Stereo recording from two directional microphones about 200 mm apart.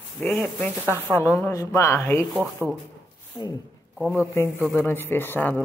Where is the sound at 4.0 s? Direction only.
5° right (ahead or behind).